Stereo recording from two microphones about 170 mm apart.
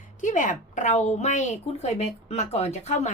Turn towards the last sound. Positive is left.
turn(degrees=40)  # may be behind; listen again after turning